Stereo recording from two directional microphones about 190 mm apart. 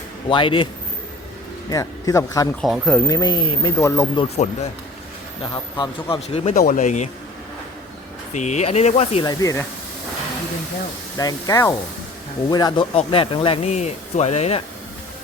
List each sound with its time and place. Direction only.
0.3 s a man's voice: 25° left (ahead or behind)
1.7 s speech: 20° left (ahead or behind)
2.6 s speech: centre (ahead or behind)
3.1 s a man's voice: 20° left (ahead or behind)
5.4 s a man's voice: 25° left (ahead or behind)
8.3 s speech: 40° left (ahead or behind)
9.2 s speech: 20° left (ahead or behind)
11.2 s speech: 20° left (ahead or behind); by 14.6 s 35° left (ahead or behind)